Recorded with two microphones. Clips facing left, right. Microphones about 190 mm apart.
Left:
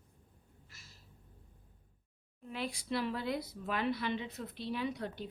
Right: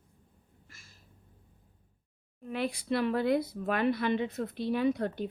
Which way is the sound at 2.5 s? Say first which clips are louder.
Right 6 dB; 60° right (ahead or behind).